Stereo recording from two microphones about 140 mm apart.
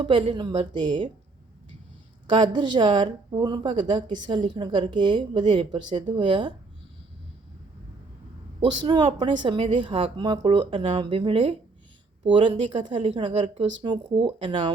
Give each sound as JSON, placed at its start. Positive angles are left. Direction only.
{"t": 0.0, "sound": "a woman's voice", "side_deg": -40}
{"t": 2.3, "sound": "a woman's voice", "side_deg": -35}
{"t": 8.8, "sound": "a woman's voice", "side_deg": -30}